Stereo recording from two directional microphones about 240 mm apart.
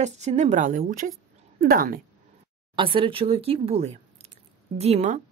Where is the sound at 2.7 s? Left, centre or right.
Right.